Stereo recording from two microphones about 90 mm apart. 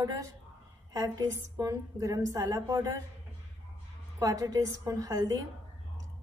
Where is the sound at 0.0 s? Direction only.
40° right (ahead or behind).